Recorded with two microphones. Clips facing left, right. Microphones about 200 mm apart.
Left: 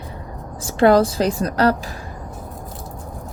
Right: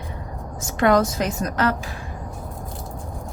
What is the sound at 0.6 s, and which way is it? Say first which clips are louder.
A woman's voice: left 4 dB; 30° left (ahead or behind).